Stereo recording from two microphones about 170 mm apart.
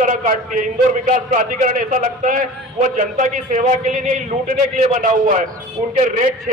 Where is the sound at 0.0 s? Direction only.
50° right (ahead or behind).